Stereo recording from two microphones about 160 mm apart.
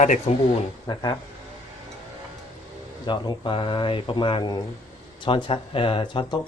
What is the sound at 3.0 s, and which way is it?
Speech, 25° left (ahead or behind).